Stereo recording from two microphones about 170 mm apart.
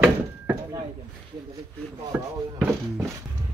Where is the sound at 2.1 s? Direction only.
5° right (ahead or behind).